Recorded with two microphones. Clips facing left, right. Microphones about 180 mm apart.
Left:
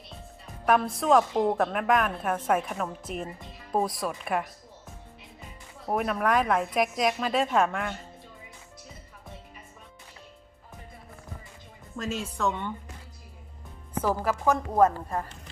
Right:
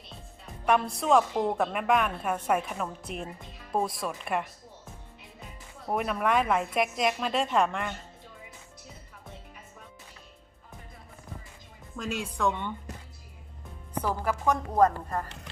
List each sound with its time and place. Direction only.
0.6 s a woman's voice: centre (ahead or behind)
5.9 s a woman's voice: centre (ahead or behind)
12.0 s speech: 15° left (ahead or behind)
12.4 s a woman's voice: centre (ahead or behind)
14.1 s speech: 5° left (ahead or behind)